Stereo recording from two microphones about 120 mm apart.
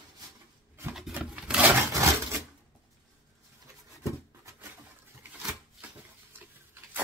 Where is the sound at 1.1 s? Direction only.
10° right (ahead or behind).